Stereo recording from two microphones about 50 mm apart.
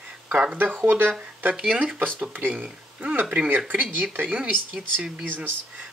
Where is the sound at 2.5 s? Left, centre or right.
Right.